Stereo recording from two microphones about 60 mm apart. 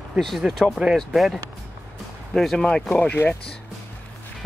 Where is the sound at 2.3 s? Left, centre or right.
Centre.